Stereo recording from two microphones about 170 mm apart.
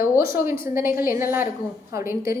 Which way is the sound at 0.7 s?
15° right (ahead or behind).